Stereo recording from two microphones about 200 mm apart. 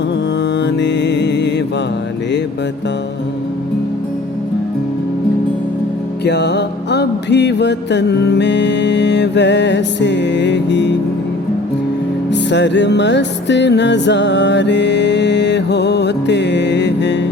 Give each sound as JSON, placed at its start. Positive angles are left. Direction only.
{"t": 0.6, "sound": "music", "side_deg": 60}
{"t": 6.2, "sound": "music", "side_deg": 55}
{"t": 12.3, "sound": "music", "side_deg": 60}